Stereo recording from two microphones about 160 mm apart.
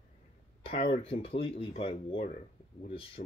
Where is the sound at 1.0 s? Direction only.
35° left (ahead or behind).